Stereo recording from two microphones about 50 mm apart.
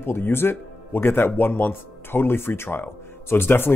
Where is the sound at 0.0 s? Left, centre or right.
Left.